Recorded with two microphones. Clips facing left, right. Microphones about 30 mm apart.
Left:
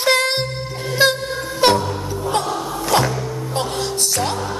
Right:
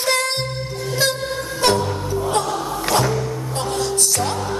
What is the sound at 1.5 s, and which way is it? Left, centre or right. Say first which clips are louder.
Music: left 3 dB; centre.